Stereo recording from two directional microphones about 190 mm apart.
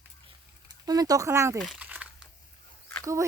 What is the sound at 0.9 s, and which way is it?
Speech, 20° right (ahead or behind).